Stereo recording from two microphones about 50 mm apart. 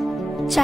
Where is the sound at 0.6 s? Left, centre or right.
Centre.